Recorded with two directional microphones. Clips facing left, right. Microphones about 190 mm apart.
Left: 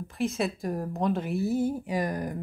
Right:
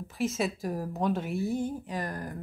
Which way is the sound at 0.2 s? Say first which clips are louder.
Left 1 dB; centre (ahead or behind).